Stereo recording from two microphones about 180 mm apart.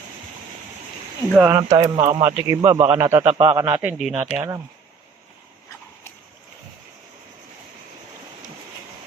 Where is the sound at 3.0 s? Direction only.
15° right (ahead or behind).